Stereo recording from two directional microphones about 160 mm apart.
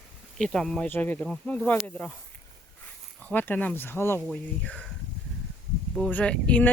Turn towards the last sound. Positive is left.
turn(degrees=10)  # may be behind; listen again after turning